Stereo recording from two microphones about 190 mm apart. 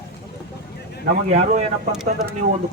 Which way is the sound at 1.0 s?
40° right (ahead or behind).